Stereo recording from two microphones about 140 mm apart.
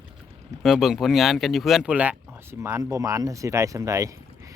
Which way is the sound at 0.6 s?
Centre (ahead or behind).